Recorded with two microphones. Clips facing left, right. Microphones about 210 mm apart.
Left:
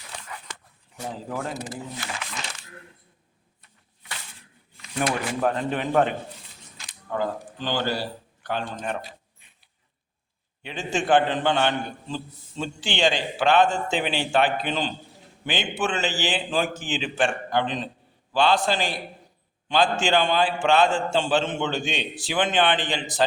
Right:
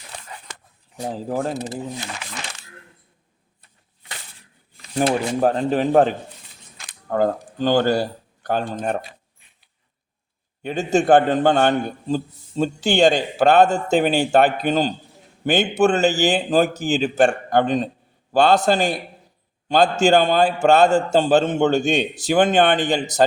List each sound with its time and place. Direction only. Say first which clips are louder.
1.0 s speech: right 7 dB; 30° right (ahead or behind)
4.8 s speech: right 6 dB; 30° right (ahead or behind)
6.7 s a man's voice: right 7 dB; 50° right (ahead or behind)
10.6 s a man's voice: right 9 dB; 45° right (ahead or behind)